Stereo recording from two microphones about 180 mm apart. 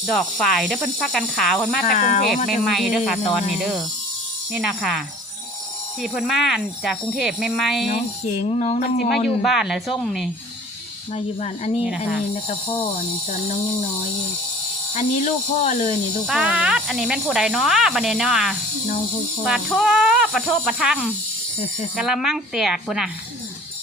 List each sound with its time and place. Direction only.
0.0 s speech: centre (ahead or behind)
1.9 s a sound: 40° left (ahead or behind)
2.5 s speech: centre (ahead or behind)
3.0 s speech: 40° left (ahead or behind)
3.6 s speech: centre (ahead or behind)
6.0 s speech: 5° right (ahead or behind)
8.4 s a sound: 40° left (ahead or behind)
9.0 s speech: centre (ahead or behind)
11.1 s speech: 35° left (ahead or behind)
14.9 s speech: 40° left (ahead or behind)
16.2 s speech: 5° right (ahead or behind)